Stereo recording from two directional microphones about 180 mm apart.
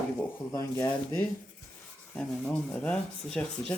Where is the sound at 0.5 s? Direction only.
15° left (ahead or behind).